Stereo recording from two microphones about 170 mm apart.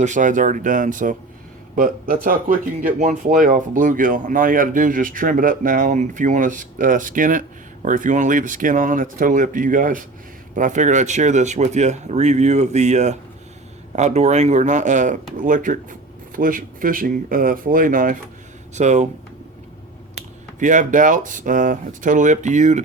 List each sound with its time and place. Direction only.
0.0 s speech: 50° right (ahead or behind)
20.6 s speech: 50° right (ahead or behind)